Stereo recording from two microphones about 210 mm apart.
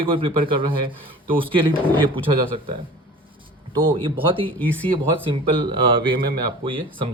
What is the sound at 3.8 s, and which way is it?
Speech, 25° right (ahead or behind).